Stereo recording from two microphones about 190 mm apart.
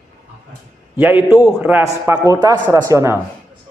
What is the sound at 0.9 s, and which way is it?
A man's voice, 10° right (ahead or behind).